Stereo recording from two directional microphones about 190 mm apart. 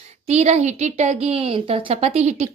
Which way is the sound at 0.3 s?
35° right (ahead or behind).